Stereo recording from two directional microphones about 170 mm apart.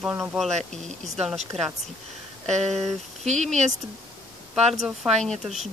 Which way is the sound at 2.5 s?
40° right (ahead or behind).